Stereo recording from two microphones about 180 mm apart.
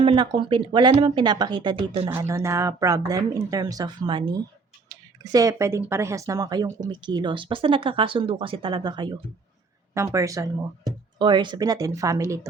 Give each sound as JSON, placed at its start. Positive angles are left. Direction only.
{"t": 0.0, "sound": "speech", "side_deg": -30}
{"t": 2.0, "sound": "speech", "side_deg": -15}